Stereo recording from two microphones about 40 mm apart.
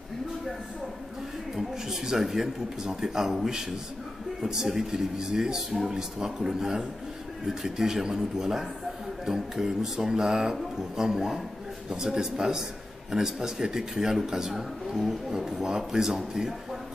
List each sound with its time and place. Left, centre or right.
1.6 s speech: centre